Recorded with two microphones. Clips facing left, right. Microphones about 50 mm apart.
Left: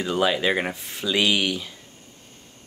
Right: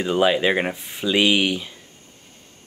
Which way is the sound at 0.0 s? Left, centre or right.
Centre.